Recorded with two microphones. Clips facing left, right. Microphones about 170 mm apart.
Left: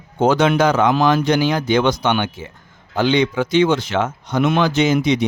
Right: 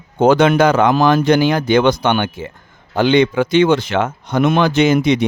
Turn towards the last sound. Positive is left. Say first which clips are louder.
# right 3 dB
turn(degrees=-60)  # may be behind; listen again after turning